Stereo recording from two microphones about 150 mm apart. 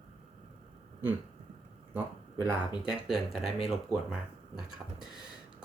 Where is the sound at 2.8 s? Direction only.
5° right (ahead or behind).